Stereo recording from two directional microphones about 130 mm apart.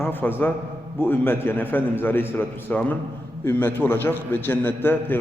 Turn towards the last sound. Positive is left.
turn(degrees=15)  # may be behind; listen again after turning